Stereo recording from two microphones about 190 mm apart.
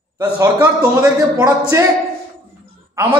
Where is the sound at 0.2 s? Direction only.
20° right (ahead or behind).